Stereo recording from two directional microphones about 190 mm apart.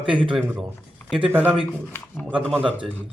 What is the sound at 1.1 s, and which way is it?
Speech, 5° right (ahead or behind).